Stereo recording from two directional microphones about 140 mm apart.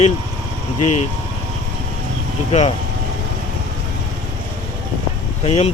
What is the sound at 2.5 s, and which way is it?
Speech, 50° left (ahead or behind).